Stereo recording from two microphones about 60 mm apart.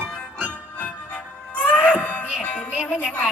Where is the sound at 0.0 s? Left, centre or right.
Right.